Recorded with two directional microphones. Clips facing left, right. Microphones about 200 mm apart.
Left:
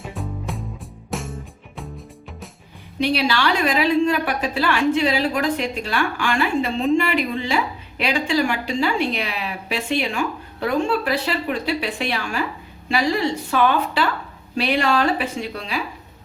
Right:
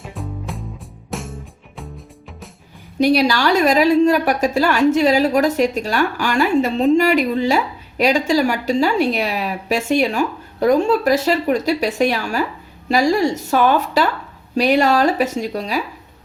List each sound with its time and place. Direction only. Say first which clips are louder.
0.0 s music: even; centre (ahead or behind)
3.0 s a woman's voice: right 5 dB; 40° right (ahead or behind)